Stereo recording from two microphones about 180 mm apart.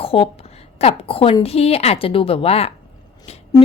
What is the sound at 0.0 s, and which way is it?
A woman's voice, 30° left (ahead or behind).